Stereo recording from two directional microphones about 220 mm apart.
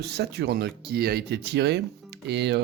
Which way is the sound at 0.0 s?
50° right (ahead or behind).